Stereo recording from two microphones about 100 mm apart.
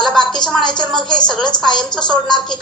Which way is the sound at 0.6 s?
50° left (ahead or behind).